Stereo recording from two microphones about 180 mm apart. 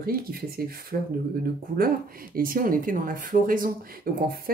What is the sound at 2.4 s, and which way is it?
Speech, 50° right (ahead or behind).